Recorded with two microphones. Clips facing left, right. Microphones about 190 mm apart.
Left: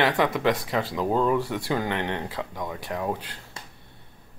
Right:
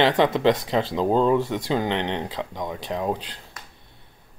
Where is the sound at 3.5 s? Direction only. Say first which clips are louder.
Left 1 dB; 30° left (ahead or behind).